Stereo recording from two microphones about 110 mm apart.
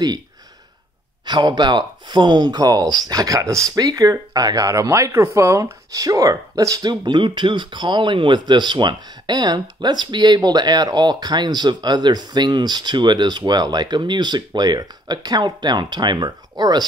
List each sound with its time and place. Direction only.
1.2 s speech: 40° right (ahead or behind)